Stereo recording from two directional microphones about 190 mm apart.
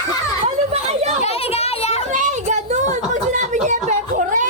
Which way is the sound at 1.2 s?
30° left (ahead or behind).